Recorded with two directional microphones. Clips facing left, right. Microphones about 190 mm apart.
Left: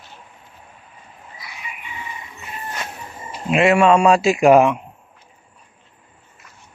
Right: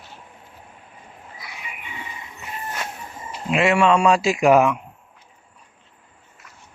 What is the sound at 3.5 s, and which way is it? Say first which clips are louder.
Speech: left 4 dB; 25° left (ahead or behind).